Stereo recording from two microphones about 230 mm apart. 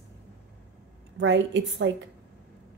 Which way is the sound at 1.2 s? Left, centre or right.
Right.